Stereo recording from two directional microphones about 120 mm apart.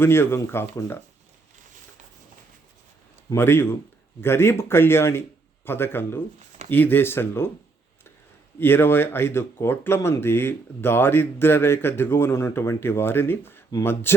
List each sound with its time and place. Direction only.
0.0 s speech: 20° left (ahead or behind)
3.2 s speech: 20° left (ahead or behind)
8.5 s speech: 20° left (ahead or behind)